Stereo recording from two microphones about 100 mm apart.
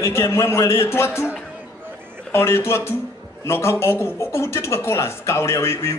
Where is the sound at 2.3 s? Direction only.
25° left (ahead or behind).